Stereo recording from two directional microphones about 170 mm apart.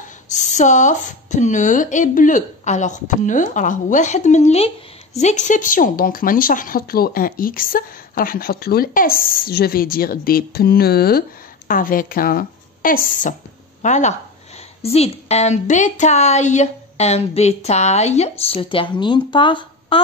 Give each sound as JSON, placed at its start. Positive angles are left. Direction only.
{"t": 0.3, "sound": "a woman's voice", "side_deg": 45}